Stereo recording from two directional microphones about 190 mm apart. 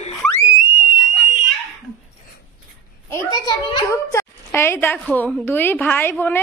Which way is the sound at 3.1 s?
15° left (ahead or behind).